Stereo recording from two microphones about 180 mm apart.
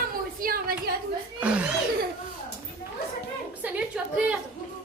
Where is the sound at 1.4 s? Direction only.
5° right (ahead or behind).